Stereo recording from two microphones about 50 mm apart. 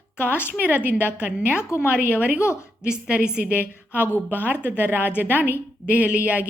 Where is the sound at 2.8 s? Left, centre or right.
Centre.